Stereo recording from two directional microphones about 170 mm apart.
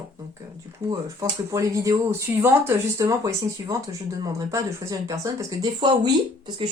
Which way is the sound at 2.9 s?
20° right (ahead or behind).